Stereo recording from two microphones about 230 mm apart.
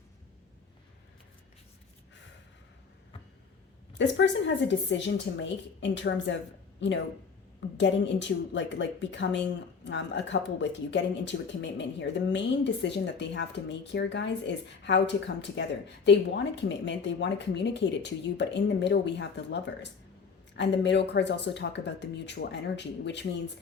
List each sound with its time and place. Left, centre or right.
3.9 s a woman's voice: left
20.6 s speech: left